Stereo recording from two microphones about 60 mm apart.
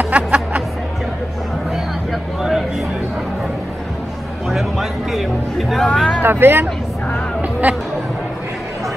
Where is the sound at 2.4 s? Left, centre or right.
Centre.